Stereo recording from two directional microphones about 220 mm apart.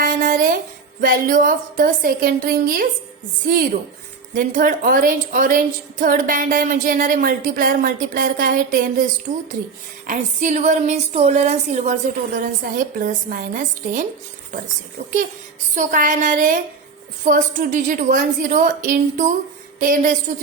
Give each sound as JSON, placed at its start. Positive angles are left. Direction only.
{"t": 0.0, "sound": "a sound", "side_deg": -40}
{"t": 1.0, "sound": "a woman's voice", "side_deg": -40}
{"t": 4.4, "sound": "a woman's voice", "side_deg": -40}
{"t": 10.1, "sound": "a woman's voice", "side_deg": -35}
{"t": 15.7, "sound": "a woman's voice", "side_deg": -35}